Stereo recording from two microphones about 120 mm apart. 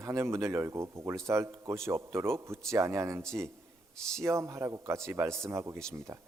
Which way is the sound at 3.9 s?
5° left (ahead or behind).